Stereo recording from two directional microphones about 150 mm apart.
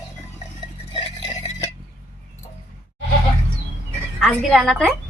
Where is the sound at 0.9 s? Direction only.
35° left (ahead or behind).